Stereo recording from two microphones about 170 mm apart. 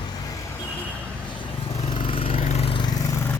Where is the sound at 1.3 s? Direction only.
30° left (ahead or behind).